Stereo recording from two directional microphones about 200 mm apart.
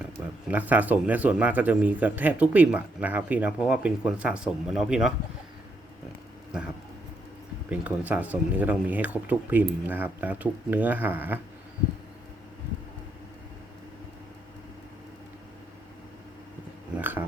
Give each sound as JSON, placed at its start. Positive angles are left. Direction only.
{"t": 0.5, "sound": "speech", "side_deg": -10}
{"t": 7.7, "sound": "speech", "side_deg": -5}
{"t": 17.0, "sound": "a sound", "side_deg": -10}